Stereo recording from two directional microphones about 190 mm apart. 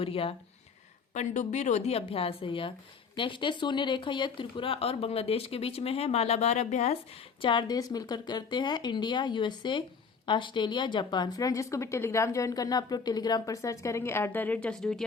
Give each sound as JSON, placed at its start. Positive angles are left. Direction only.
{"t": 0.0, "sound": "speech", "side_deg": 30}
{"t": 7.4, "sound": "speech", "side_deg": 20}